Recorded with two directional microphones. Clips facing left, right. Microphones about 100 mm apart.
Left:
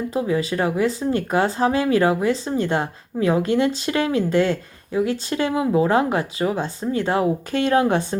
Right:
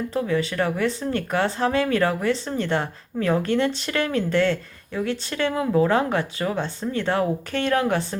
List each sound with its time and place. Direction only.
0.1 s a woman's voice: 15° left (ahead or behind)